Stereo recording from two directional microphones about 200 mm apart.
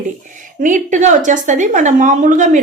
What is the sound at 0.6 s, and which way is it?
Speech, 40° right (ahead or behind).